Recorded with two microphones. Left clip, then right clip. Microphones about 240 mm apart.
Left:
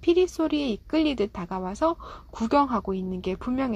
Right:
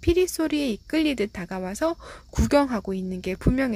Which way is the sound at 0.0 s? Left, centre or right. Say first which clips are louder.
Even; right.